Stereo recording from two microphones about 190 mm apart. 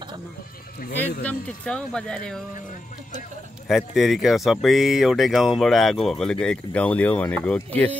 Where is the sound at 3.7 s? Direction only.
Centre (ahead or behind).